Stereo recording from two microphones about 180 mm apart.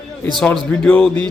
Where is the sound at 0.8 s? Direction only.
5° left (ahead or behind).